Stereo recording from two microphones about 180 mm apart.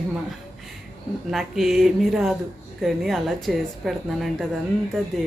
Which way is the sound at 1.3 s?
Centre (ahead or behind).